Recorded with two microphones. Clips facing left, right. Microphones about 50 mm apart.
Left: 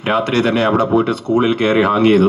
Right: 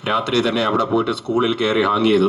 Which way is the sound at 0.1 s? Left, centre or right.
Left.